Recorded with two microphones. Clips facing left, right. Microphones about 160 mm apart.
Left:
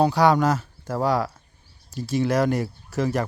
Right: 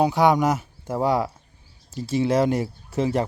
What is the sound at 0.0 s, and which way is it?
Speech, 20° right (ahead or behind).